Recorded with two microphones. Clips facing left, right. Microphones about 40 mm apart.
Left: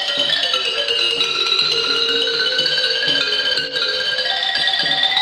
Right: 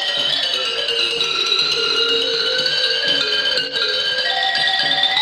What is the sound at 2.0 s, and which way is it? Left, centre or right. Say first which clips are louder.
Music: even; centre.